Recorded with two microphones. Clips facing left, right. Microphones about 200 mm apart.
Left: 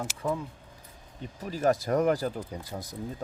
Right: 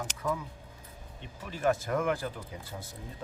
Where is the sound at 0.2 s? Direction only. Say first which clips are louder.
Left 2 dB; 30° left (ahead or behind).